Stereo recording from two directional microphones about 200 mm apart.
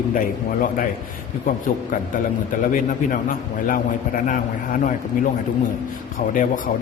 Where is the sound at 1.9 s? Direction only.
45° left (ahead or behind).